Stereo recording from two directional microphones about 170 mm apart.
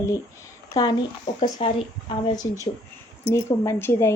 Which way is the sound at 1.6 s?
30° left (ahead or behind).